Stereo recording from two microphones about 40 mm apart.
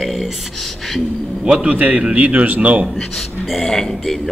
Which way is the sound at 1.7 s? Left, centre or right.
Right.